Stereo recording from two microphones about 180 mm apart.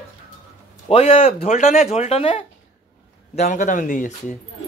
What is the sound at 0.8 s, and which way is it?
Speech, 35° left (ahead or behind).